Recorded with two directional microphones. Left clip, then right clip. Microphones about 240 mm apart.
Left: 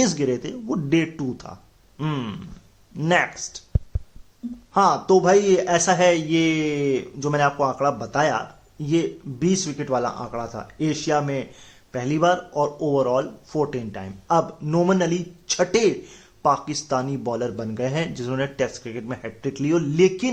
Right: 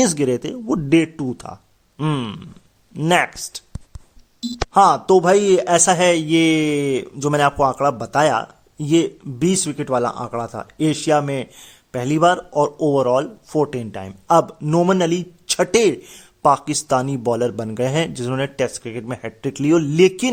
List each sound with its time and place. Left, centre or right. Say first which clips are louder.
0.0 s speech: right 4 dB; right
4.7 s speech: right 5 dB; right